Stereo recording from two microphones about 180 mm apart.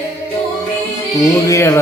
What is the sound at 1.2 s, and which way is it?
Music, 15° left (ahead or behind).